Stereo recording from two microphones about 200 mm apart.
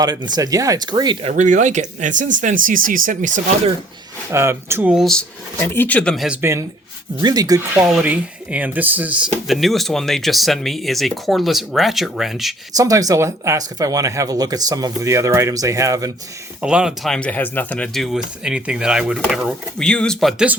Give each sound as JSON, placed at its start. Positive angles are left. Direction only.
{"t": 0.0, "sound": "speech", "side_deg": -20}
{"t": 1.3, "sound": "speech", "side_deg": -35}
{"t": 4.3, "sound": "speech", "side_deg": -15}
{"t": 7.9, "sound": "speech", "side_deg": -5}
{"t": 12.7, "sound": "speech", "side_deg": -15}
{"t": 16.6, "sound": "speech", "side_deg": -5}